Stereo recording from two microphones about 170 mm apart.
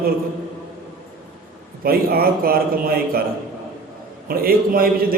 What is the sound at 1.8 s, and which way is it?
A man's voice, 60° right (ahead or behind).